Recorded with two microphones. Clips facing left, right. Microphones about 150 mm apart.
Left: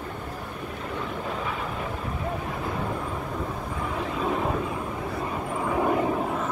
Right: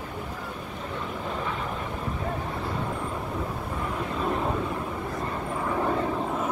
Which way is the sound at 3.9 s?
5° left (ahead or behind).